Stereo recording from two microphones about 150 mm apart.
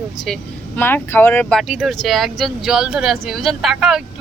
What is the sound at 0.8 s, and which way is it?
Speech, 15° left (ahead or behind).